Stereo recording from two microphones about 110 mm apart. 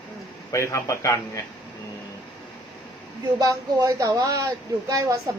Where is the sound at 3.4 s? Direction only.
35° right (ahead or behind).